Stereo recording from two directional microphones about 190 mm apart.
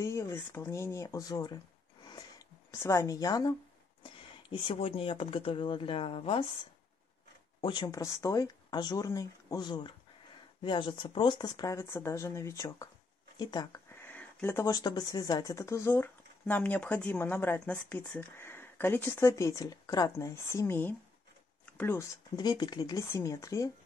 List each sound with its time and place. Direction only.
0.0 s speech: 15° left (ahead or behind)
2.0 s a sound: 20° left (ahead or behind)
4.0 s speech: 25° left (ahead or behind)
7.6 s speech: 25° left (ahead or behind)